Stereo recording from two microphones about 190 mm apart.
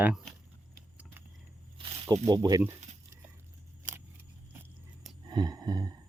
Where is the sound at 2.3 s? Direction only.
20° right (ahead or behind).